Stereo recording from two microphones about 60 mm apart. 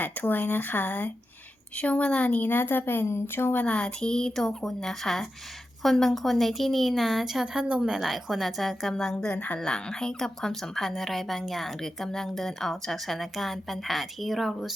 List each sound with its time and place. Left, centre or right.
0.0 s a woman's voice: left
3.6 s a woman's voice: centre
7.4 s a woman's voice: centre
7.9 s a woman's voice: centre
8.9 s a woman's voice: centre
9.6 s a woman's voice: centre